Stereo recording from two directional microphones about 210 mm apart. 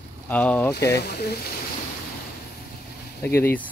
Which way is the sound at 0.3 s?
5° left (ahead or behind).